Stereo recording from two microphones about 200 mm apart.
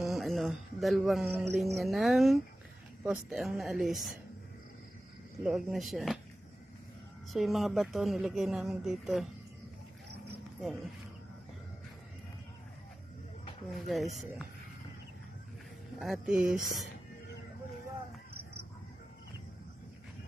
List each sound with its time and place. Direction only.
0.0 s a sound: centre (ahead or behind)
1.3 s music: 10° right (ahead or behind)
1.7 s speech: centre (ahead or behind)
5.5 s speech: centre (ahead or behind)
7.3 s speech: centre (ahead or behind)
13.7 s speech: centre (ahead or behind)
16.0 s speech: centre (ahead or behind)